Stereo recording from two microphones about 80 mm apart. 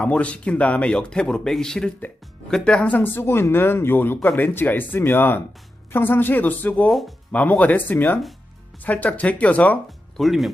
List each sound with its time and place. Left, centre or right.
0.0 s speech: centre
10.2 s speech: centre